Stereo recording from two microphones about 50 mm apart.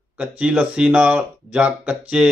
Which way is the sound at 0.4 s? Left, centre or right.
Centre.